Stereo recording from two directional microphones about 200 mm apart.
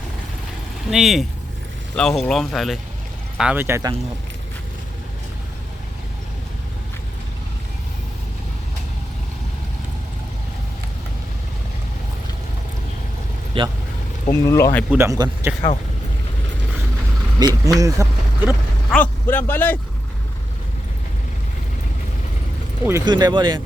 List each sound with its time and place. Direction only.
0.9 s speech: centre (ahead or behind)
13.5 s speech: 25° right (ahead or behind)
14.3 s speech: 15° left (ahead or behind)
14.8 s speech: 15° right (ahead or behind)
17.4 s speech: 20° right (ahead or behind)
18.9 s speech: 10° left (ahead or behind)
22.9 s speech: 15° right (ahead or behind)